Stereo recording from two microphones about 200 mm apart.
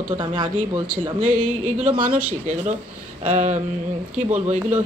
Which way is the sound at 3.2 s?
35° right (ahead or behind).